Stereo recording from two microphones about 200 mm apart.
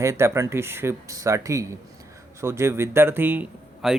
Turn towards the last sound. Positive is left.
turn(degrees=0)  # may be behind; listen again after turning